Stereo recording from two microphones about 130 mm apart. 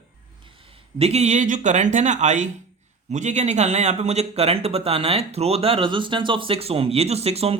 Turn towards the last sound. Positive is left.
turn(degrees=-50)  # may be behind; listen again after turning